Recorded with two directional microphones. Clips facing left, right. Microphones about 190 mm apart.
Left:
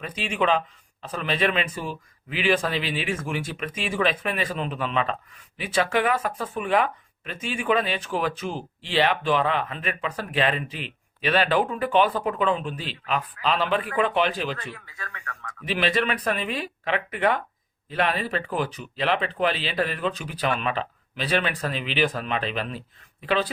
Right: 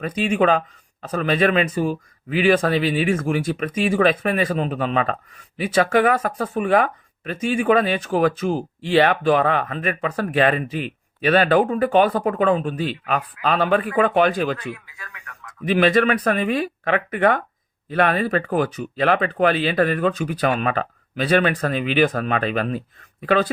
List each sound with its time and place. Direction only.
0.0 s speech: 45° right (ahead or behind)
15.6 s speech: 50° right (ahead or behind)